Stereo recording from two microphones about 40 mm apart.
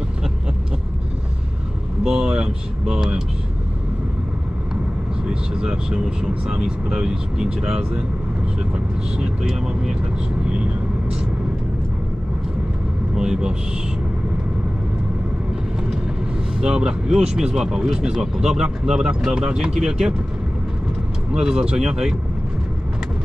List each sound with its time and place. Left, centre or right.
2.0 s vehicle: right
2.8 s speech: centre
5.3 s speech: right
9.4 s speech: centre
13.1 s speech: centre
16.6 s speech: centre
21.3 s speech: right